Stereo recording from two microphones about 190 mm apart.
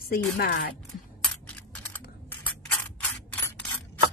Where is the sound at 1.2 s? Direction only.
5° left (ahead or behind).